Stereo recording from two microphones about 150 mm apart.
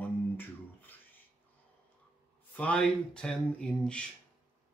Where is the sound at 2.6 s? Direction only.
5° left (ahead or behind).